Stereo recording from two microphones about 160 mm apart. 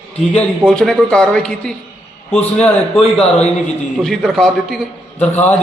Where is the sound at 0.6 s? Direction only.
5° left (ahead or behind).